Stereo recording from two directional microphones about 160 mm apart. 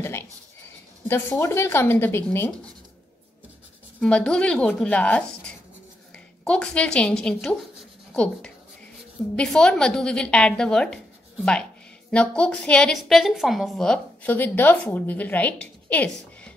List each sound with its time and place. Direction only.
1.0 s a woman's voice: 15° left (ahead or behind)
4.0 s a woman's voice: 5° left (ahead or behind)
12.1 s a woman's voice: 5° left (ahead or behind)